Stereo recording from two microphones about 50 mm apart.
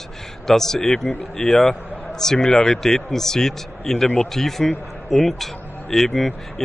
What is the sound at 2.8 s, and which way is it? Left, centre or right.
A man's voice, centre.